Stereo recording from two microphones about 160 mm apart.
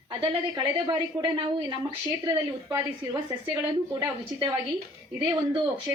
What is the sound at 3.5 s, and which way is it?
Speech, 20° right (ahead or behind).